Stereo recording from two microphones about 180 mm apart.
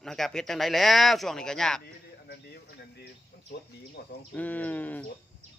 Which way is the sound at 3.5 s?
65° left (ahead or behind).